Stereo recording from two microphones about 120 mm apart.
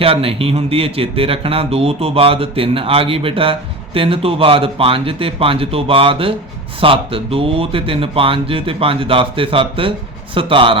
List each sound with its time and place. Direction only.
0.0 s speech: 50° right (ahead or behind)